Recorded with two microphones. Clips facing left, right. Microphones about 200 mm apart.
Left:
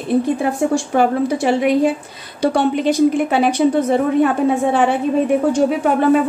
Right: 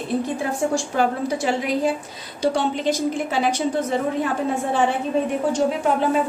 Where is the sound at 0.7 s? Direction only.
60° left (ahead or behind).